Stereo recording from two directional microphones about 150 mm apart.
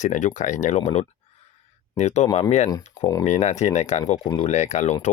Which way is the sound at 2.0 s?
45° left (ahead or behind).